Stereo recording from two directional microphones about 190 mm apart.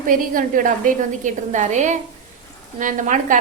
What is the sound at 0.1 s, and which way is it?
A woman's voice, 45° right (ahead or behind).